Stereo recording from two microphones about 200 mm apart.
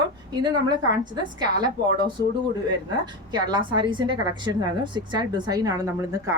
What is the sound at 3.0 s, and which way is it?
A woman's voice, 20° right (ahead or behind).